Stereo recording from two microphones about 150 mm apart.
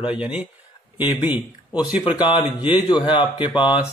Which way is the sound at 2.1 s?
25° left (ahead or behind).